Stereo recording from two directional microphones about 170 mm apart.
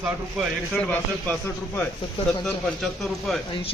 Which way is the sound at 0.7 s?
10° left (ahead or behind).